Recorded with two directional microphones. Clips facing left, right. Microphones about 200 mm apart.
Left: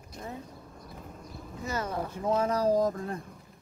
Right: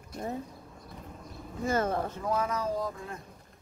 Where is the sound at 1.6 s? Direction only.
50° right (ahead or behind).